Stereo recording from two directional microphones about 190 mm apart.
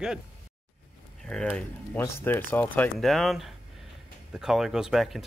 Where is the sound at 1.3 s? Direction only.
5° left (ahead or behind).